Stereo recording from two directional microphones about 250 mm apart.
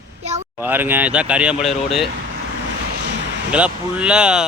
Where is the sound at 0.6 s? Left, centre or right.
Centre.